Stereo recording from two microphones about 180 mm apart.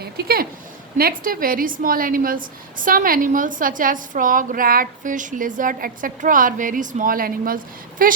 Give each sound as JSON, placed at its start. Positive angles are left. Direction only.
{"t": 0.0, "sound": "a woman's voice", "side_deg": -60}